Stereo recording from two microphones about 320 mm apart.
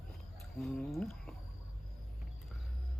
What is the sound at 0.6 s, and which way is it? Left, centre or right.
Speech, centre.